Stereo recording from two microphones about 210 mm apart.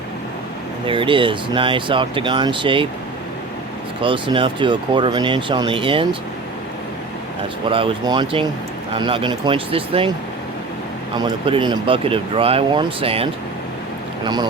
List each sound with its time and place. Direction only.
0.9 s speech: 25° right (ahead or behind)
4.0 s speech: 25° right (ahead or behind)
7.7 s speech: 25° right (ahead or behind)
11.2 s speech: 25° right (ahead or behind)